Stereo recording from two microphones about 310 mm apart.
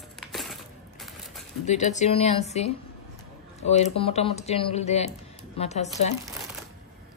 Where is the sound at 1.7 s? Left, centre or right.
Left.